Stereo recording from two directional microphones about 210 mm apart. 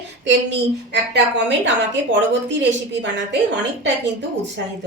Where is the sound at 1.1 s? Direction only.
55° right (ahead or behind).